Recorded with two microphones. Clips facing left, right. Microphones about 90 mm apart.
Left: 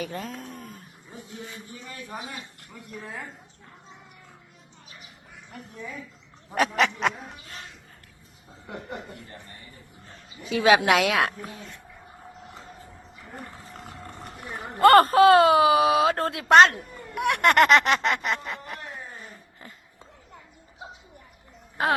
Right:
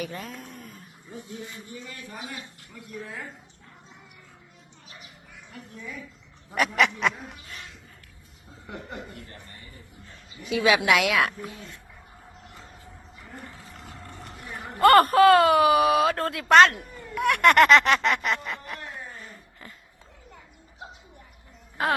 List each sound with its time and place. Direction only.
0.0 s speech: 40° left (ahead or behind)
6.5 s duck: 35° left (ahead or behind)
10.1 s speech: 40° left (ahead or behind)
13.7 s vehicle: 35° left (ahead or behind)
14.8 s speech: 25° left (ahead or behind)